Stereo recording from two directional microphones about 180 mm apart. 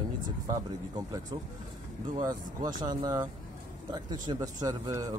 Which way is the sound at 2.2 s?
20° right (ahead or behind).